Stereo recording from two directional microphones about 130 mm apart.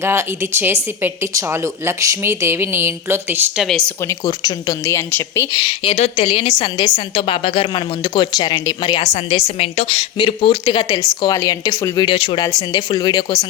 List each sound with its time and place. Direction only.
0.0 s a woman's voice: 20° right (ahead or behind)
3.6 s speech: centre (ahead or behind)
4.1 s speech: 30° left (ahead or behind)
5.5 s a woman's voice: 45° left (ahead or behind)
9.0 s a woman's voice: 45° left (ahead or behind); by 12.1 s 25° left (ahead or behind)
12.1 s a woman's voice: 45° left (ahead or behind)
12.4 s a woman's voice: 25° left (ahead or behind)